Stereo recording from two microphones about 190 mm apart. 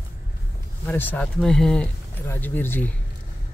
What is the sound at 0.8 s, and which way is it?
Speech, 10° left (ahead or behind).